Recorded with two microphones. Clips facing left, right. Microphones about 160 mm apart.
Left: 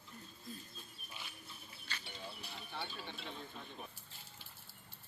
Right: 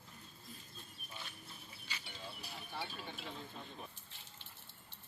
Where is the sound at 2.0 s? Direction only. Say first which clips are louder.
Left 1 dB; centre (ahead or behind).